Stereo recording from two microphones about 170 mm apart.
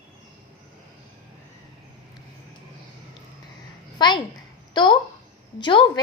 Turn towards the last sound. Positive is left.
turn(degrees=25)  # may be behind; listen again after turning